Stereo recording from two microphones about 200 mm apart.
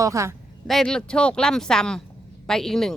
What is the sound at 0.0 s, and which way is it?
Speech, 15° right (ahead or behind).